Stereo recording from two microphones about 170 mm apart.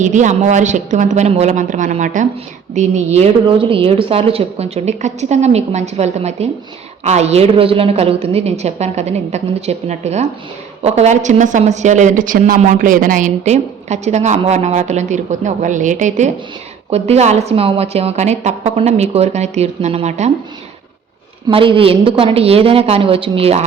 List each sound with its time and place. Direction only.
0.0 s a woman's voice: 45° right (ahead or behind)
21.5 s a woman's voice: 30° right (ahead or behind)